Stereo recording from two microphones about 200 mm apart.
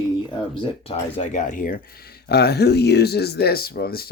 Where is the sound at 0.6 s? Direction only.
30° left (ahead or behind).